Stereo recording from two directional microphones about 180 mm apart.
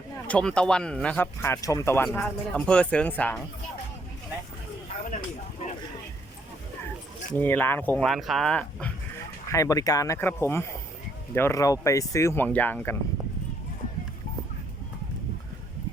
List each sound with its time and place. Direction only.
0.3 s speech: 5° left (ahead or behind)
2.0 s speech: 5° left (ahead or behind)
7.3 s speech: 10° left (ahead or behind)
9.5 s speech: 20° left (ahead or behind)